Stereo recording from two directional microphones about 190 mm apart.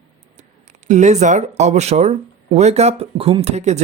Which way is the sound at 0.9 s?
40° right (ahead or behind).